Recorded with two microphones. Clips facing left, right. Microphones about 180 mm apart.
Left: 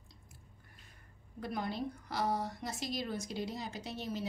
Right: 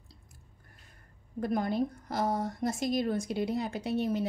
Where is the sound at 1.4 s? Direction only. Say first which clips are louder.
Right 8 dB; 50° right (ahead or behind).